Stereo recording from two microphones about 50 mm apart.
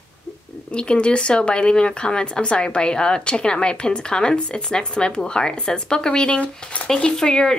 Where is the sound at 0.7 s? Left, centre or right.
Left.